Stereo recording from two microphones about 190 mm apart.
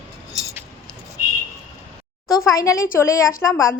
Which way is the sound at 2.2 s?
15° left (ahead or behind).